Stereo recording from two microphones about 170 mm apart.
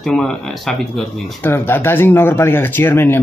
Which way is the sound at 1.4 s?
15° left (ahead or behind).